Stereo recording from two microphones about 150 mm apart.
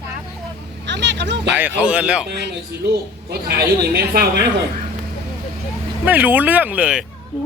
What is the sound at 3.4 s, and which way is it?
Speech, 90° right.